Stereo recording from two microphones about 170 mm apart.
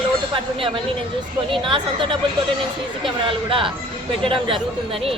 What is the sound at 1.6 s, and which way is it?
Speech, 30° right (ahead or behind).